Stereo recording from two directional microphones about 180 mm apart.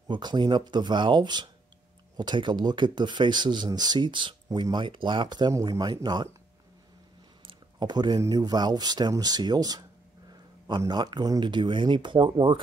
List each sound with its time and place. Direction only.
0.1 s speech: 25° right (ahead or behind)
7.4 s speech: 25° right (ahead or behind)